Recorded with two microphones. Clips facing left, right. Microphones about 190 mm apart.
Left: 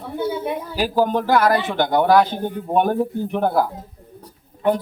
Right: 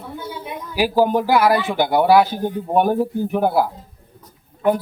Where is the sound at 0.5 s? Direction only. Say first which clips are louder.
Left 4 dB; 30° left (ahead or behind).